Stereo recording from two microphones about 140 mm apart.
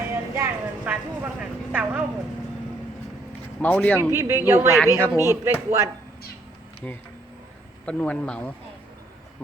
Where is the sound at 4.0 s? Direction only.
20° right (ahead or behind).